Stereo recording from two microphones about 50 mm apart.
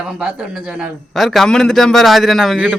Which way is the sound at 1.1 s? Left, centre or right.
Centre.